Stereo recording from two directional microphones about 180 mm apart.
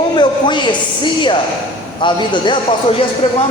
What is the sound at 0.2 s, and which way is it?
Speech, 25° left (ahead or behind).